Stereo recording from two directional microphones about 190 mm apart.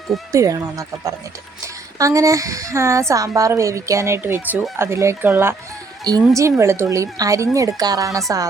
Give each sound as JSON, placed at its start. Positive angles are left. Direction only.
{"t": 0.3, "sound": "a woman's voice", "side_deg": -15}